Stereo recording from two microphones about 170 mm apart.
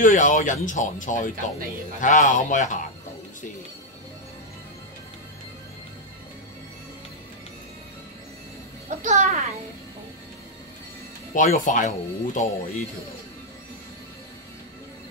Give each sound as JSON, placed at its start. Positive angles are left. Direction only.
{"t": 0.0, "sound": "speech", "side_deg": 50}
{"t": 9.0, "sound": "a child's voice", "side_deg": -45}
{"t": 11.3, "sound": "speech", "side_deg": 50}